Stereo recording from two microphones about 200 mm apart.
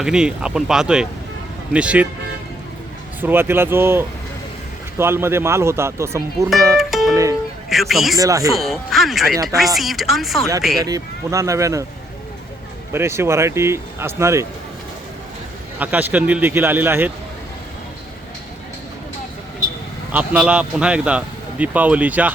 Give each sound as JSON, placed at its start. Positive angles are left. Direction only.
{"t": 0.0, "sound": "speech", "side_deg": -5}
{"t": 3.2, "sound": "speech", "side_deg": -10}
{"t": 6.7, "sound": "music", "side_deg": 0}
{"t": 7.7, "sound": "speech", "side_deg": 0}
{"t": 8.2, "sound": "speech", "side_deg": -15}
{"t": 8.5, "sound": "speech", "side_deg": 0}
{"t": 10.8, "sound": "speech", "side_deg": -20}
{"t": 12.9, "sound": "speech", "side_deg": -15}
{"t": 15.8, "sound": "speech", "side_deg": -10}
{"t": 20.1, "sound": "speech", "side_deg": -5}